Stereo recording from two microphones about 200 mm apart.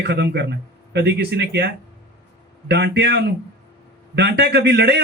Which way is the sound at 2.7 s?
55° right (ahead or behind).